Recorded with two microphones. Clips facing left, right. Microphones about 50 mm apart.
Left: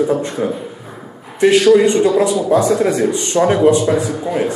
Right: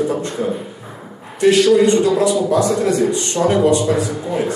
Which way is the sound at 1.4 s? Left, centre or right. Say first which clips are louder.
Left 2 dB; left.